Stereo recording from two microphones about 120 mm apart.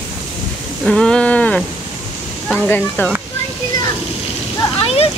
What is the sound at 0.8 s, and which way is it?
Speech, 5° left (ahead or behind).